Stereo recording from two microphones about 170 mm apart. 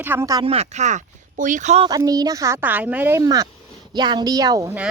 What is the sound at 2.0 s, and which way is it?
Speech, 20° right (ahead or behind).